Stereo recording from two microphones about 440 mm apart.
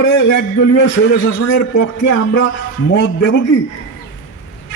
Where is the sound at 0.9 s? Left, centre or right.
Left.